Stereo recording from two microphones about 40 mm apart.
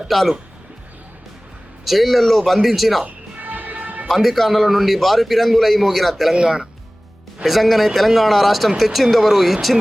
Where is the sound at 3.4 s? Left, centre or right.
Right.